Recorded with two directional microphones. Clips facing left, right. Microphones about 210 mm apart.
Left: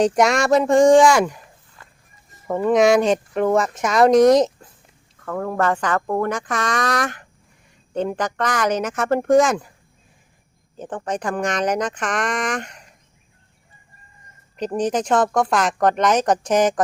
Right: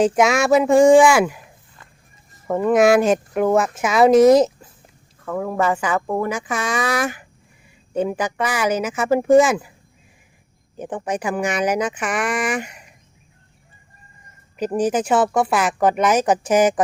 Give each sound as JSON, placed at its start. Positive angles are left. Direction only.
{"t": 0.0, "sound": "a woman's voice", "side_deg": 0}
{"t": 2.6, "sound": "a woman's voice", "side_deg": -5}
{"t": 10.8, "sound": "speech", "side_deg": -10}
{"t": 14.5, "sound": "speech", "side_deg": -5}